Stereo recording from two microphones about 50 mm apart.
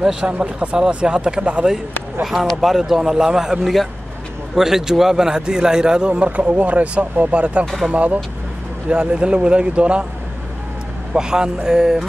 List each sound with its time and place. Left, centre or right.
0.0 s a man's voice: centre
0.3 s a man's voice: right
2.6 s a man's voice: centre; by 10.0 s right
11.1 s a man's voice: centre